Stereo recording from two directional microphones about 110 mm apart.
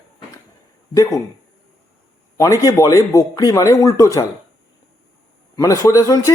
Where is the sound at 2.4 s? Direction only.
30° left (ahead or behind).